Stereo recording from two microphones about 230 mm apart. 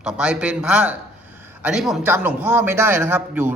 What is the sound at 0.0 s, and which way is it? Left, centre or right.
A man's voice, centre.